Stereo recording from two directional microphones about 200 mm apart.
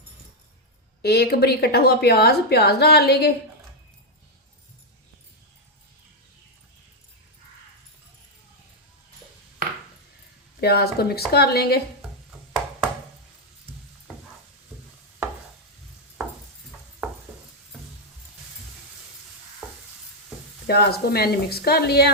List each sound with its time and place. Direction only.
1.0 s a woman's voice: 55° left (ahead or behind)
10.6 s a woman's voice: 50° left (ahead or behind)
12.3 s ping: 5° right (ahead or behind)
19.6 s stir: 5° right (ahead or behind)
20.7 s a woman's voice: 50° left (ahead or behind)